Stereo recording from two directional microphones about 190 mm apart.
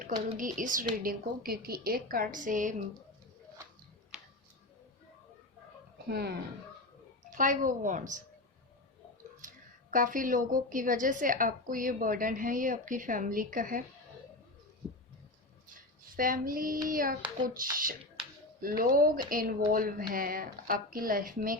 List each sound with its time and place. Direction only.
0.3 s a woman's voice: 45° right (ahead or behind)
4.1 s tick-tock: 5° right (ahead or behind)
6.1 s speech: 55° right (ahead or behind)
7.3 s a woman's voice: 45° right (ahead or behind)
9.4 s a woman's voice: 45° right (ahead or behind)
16.1 s a woman's voice: 45° right (ahead or behind)